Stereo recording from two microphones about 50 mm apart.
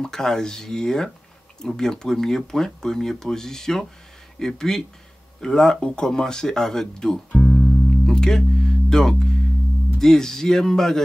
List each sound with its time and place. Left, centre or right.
0.0 s speech: centre